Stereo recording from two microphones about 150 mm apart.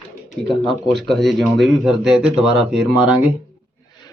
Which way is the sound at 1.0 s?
Centre (ahead or behind).